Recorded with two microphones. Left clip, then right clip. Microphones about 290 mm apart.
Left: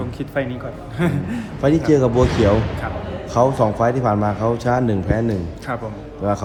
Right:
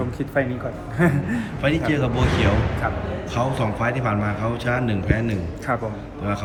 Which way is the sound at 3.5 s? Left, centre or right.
Centre.